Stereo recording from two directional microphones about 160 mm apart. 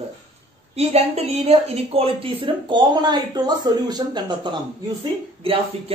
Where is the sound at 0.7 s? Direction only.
40° right (ahead or behind).